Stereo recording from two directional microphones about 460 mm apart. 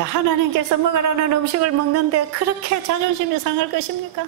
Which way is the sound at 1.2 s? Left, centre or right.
Right.